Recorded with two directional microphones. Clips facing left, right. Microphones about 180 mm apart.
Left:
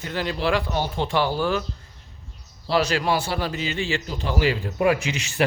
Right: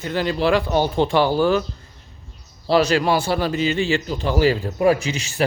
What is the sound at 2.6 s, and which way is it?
A man's voice, 35° right (ahead or behind).